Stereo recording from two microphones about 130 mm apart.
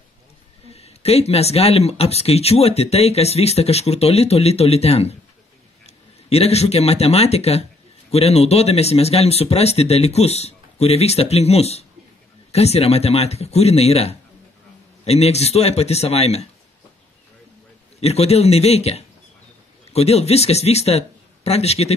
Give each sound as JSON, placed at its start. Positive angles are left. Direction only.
{"t": 0.7, "sound": "speech", "side_deg": 55}
{"t": 18.0, "sound": "speech", "side_deg": 55}